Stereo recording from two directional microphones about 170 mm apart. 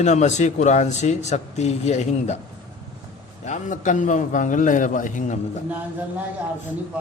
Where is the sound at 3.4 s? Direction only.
45° left (ahead or behind).